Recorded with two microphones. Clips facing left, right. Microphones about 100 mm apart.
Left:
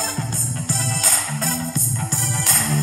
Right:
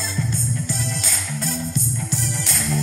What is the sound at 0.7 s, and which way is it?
Music, 40° left (ahead or behind).